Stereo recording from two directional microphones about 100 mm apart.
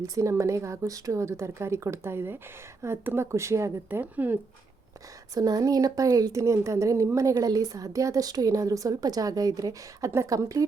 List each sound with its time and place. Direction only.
0.0 s a woman's voice: 30° right (ahead or behind)
3.8 s a woman's voice: 20° right (ahead or behind)
5.3 s speech: 40° right (ahead or behind)